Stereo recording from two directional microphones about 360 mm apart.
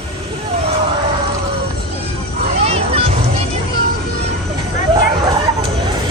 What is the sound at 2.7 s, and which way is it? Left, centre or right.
Music, centre.